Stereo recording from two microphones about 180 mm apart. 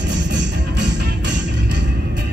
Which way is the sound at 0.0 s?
75° right (ahead or behind).